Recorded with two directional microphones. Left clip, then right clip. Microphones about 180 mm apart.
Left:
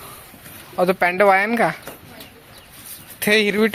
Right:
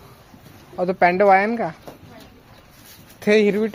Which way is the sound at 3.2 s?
5° right (ahead or behind).